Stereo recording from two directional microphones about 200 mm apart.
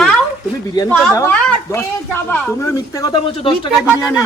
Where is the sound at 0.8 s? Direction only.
15° left (ahead or behind).